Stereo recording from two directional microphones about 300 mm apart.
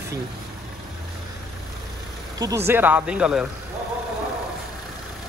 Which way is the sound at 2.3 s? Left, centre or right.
Centre.